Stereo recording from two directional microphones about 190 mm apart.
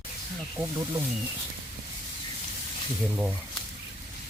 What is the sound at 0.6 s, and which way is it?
Speech, 10° right (ahead or behind).